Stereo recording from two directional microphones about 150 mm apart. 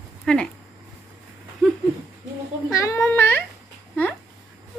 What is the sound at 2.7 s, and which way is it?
Speech, 20° left (ahead or behind).